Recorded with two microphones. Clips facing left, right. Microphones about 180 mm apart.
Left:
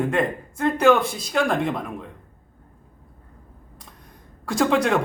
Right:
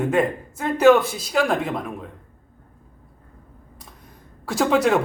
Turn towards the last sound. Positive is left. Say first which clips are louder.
# right 1 dB
turn(degrees=-5)  # may be behind; listen again after turning